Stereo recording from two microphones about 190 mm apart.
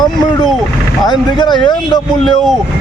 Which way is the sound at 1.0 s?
20° left (ahead or behind).